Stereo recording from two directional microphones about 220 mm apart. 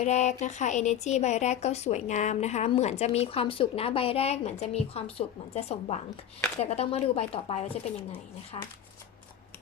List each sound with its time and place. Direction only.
0.0 s a woman's voice: 30° left (ahead or behind)